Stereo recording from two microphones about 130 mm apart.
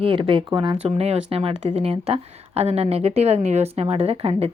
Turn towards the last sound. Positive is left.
turn(degrees=-50)  # may be behind; listen again after turning